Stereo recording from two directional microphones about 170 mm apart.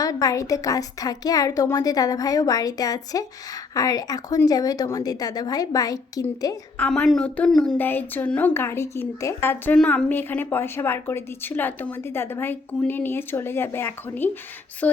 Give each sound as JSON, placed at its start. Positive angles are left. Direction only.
{"t": 0.0, "sound": "a woman's voice", "side_deg": 20}
{"t": 6.7, "sound": "a woman's voice", "side_deg": 5}